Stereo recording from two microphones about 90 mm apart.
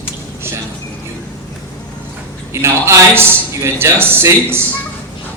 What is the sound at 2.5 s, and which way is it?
A man's voice, 30° right (ahead or behind).